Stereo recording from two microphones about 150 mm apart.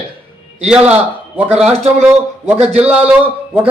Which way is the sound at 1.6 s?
45° right (ahead or behind).